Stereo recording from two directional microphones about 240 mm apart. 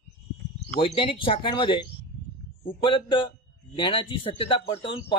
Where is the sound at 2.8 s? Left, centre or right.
Left.